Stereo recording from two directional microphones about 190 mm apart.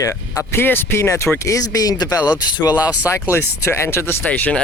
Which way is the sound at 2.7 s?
5° right (ahead or behind).